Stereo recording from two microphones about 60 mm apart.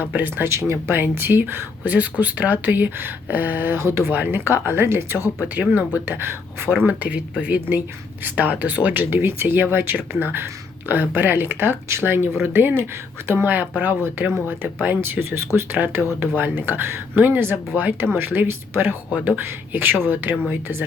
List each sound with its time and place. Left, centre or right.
0.1 s speech: right
0.4 s speech: right
0.9 s speech: right
3.8 s speech: right
4.1 s speech: right
5.5 s speech: right
6.8 s speech: right